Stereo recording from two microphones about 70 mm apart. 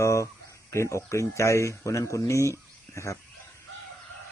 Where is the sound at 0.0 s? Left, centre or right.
Left.